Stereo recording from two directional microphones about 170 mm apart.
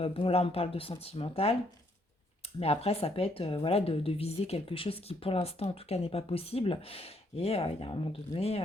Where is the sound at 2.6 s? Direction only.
35° left (ahead or behind).